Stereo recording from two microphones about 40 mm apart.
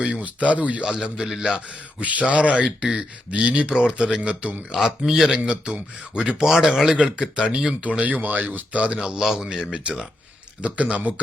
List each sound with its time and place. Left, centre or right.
0.0 s speech: right
1.0 s speech: right
1.5 s speech: right
2.6 s speech: right
4.7 s speech: centre
5.5 s speech: right
6.5 s speech: centre
6.9 s speech: right
7.9 s speech: right
9.0 s speech: centre
10.6 s speech: right